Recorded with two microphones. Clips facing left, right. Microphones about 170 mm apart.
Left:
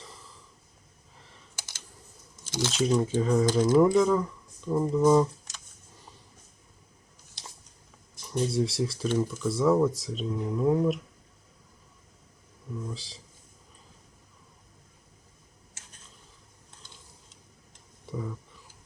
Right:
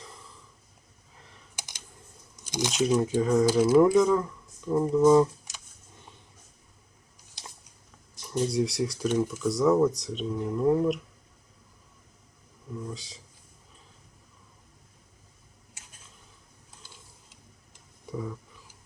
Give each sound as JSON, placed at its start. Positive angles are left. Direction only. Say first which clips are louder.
{"t": 0.0, "sound": "snort", "louder": "right 1 dB", "side_deg": 0}
{"t": 1.5, "sound": "computer keyboard", "louder": "right 2 dB", "side_deg": -15}
{"t": 2.5, "sound": "speech", "louder": "even", "side_deg": -15}
{"t": 2.7, "sound": "speech", "louder": "right 1 dB", "side_deg": -5}
{"t": 8.3, "sound": "speech", "louder": "right 1 dB", "side_deg": 0}
{"t": 12.8, "sound": "speech", "louder": "right 1 dB", "side_deg": 0}
{"t": 18.1, "sound": "speech", "louder": "right 1 dB", "side_deg": 0}